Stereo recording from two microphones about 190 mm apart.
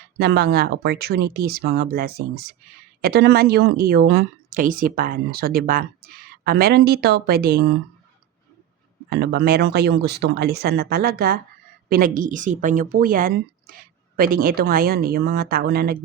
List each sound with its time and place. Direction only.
0.2 s speech: 60° right (ahead or behind)
9.0 s speech: 55° right (ahead or behind)